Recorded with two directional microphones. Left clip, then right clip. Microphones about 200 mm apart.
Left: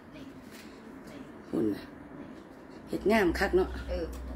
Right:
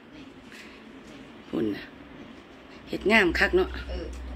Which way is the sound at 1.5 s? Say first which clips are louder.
Right 2 dB; 5° right (ahead or behind).